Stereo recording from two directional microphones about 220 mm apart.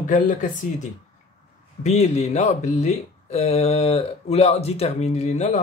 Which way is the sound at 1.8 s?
30° left (ahead or behind).